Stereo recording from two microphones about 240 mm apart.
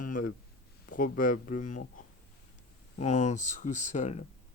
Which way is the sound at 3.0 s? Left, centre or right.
Left.